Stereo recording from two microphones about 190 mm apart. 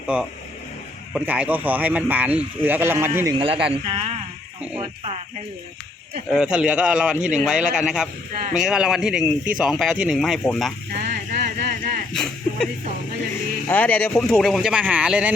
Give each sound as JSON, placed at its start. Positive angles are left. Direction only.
{"t": 0.1, "sound": "speech", "side_deg": -5}
{"t": 3.3, "sound": "speech", "side_deg": -30}
{"t": 6.3, "sound": "speech", "side_deg": -5}
{"t": 11.0, "sound": "vehicle", "side_deg": -40}
{"t": 11.4, "sound": "a sound", "side_deg": -50}
{"t": 12.1, "sound": "a sound", "side_deg": 5}
{"t": 13.7, "sound": "speech", "side_deg": 10}